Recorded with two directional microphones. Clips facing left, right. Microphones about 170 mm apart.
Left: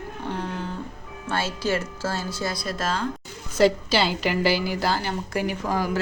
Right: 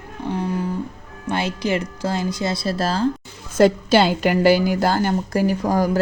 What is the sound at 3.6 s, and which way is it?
A woman's voice, 50° right (ahead or behind).